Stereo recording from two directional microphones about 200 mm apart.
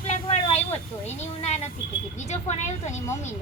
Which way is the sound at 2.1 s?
35° left (ahead or behind).